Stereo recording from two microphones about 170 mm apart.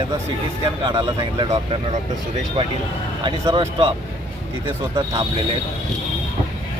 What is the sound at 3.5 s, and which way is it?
Speech, 30° right (ahead or behind).